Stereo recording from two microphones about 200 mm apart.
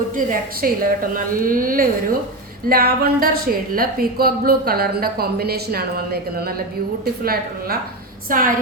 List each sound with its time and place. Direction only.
0.3 s a woman's voice: 45° right (ahead or behind)